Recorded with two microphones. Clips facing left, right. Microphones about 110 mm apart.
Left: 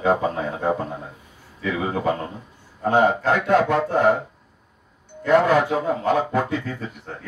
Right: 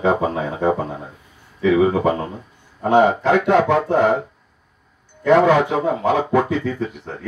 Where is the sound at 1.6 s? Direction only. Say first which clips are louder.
Right 9 dB; 70° right (ahead or behind).